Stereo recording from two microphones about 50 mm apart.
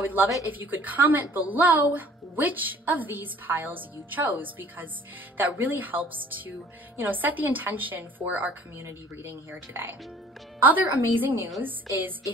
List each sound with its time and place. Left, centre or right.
0.0 s a woman's voice: right
10.6 s a woman's voice: right